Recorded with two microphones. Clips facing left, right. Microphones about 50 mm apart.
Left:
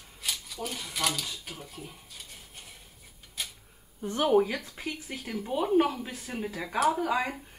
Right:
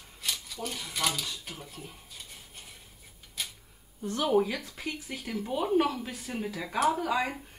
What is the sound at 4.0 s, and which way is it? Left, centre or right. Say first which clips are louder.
Speech: left 2 dB; centre.